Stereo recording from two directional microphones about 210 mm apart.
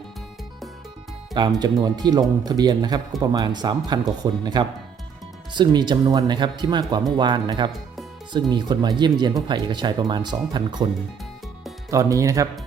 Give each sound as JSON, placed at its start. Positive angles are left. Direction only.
{"t": 1.3, "sound": "speech", "side_deg": -20}
{"t": 11.9, "sound": "speech", "side_deg": -15}